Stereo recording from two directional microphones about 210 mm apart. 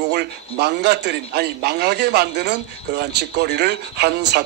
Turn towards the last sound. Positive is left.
turn(degrees=-50)  # may be behind; listen again after turning